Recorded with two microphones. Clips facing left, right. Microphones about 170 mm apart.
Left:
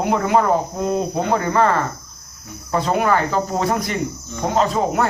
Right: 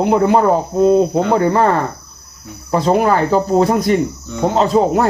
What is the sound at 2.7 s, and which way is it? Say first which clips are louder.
Speech: right 4 dB; 30° right (ahead or behind).